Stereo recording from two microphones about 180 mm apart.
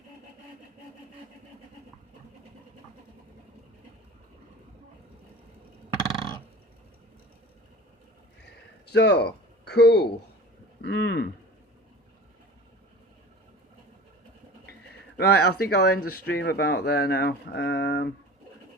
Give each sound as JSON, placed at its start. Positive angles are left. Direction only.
{"t": 8.9, "sound": "speech", "side_deg": 70}
{"t": 15.2, "sound": "speech", "side_deg": 65}